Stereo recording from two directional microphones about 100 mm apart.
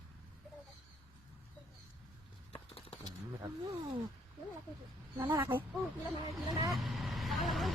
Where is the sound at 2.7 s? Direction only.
75° left (ahead or behind).